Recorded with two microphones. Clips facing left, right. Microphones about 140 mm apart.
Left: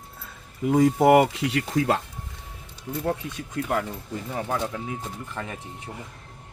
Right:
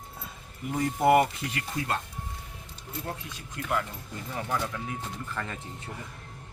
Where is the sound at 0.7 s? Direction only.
90° left.